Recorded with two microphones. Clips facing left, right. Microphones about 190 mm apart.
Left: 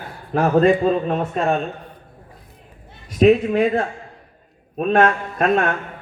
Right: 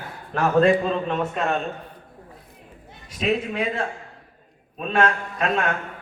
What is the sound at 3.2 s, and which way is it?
A man's voice, 45° left (ahead or behind).